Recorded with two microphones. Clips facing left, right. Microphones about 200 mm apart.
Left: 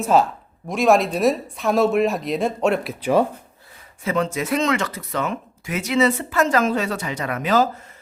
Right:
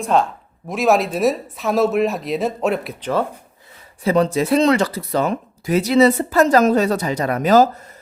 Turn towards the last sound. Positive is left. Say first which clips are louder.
# right 6 dB
turn(degrees=-40)  # may be behind; listen again after turning